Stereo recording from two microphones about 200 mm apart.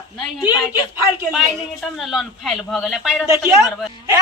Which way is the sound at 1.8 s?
Centre (ahead or behind).